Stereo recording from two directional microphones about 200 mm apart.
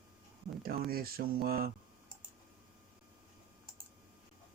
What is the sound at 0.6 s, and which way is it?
Speech, 50° right (ahead or behind).